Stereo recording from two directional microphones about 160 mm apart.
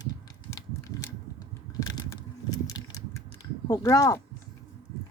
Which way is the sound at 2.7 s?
20° left (ahead or behind).